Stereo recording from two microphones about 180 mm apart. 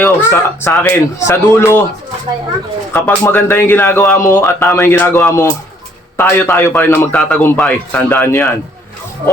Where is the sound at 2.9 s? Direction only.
10° left (ahead or behind).